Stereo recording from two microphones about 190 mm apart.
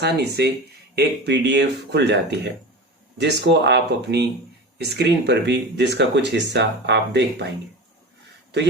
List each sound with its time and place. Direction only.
0.0 s speech: 60° right (ahead or behind)